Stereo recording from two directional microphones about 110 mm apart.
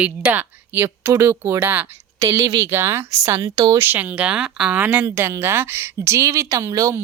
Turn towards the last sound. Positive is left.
turn(degrees=-30)  # may be behind; listen again after turning